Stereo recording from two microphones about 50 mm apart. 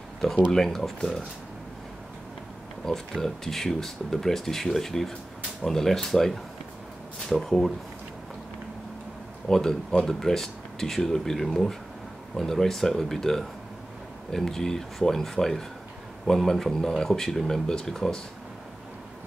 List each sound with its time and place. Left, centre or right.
0.5 s speech: centre
2.8 s speech: centre
7.4 s speech: centre
9.5 s speech: centre